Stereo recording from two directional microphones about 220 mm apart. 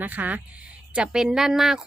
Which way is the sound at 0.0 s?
10° right (ahead or behind).